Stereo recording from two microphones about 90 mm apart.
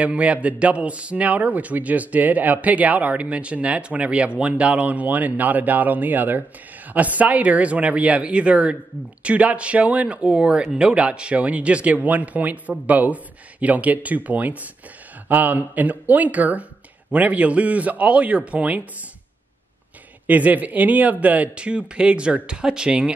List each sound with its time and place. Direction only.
0.0 s a man's voice: 15° right (ahead or behind)
20.2 s a man's voice: 15° right (ahead or behind)